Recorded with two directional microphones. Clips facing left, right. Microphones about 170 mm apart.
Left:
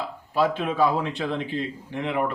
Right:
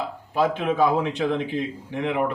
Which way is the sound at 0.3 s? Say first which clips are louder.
Right 1 dB; 15° right (ahead or behind).